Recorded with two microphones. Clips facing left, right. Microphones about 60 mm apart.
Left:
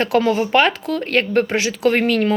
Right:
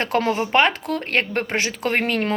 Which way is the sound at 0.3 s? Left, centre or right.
Right.